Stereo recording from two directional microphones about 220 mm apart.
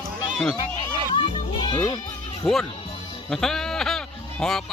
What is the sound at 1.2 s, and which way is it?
Speech, 20° left (ahead or behind).